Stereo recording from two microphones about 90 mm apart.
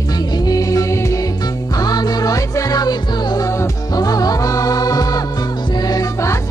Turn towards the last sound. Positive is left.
turn(degrees=35)  # may be behind; listen again after turning